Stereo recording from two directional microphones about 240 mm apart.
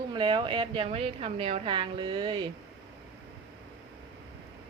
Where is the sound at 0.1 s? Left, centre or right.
Centre.